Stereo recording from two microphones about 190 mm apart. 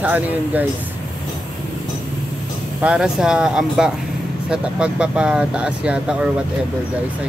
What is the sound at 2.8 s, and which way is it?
Speech, 5° right (ahead or behind).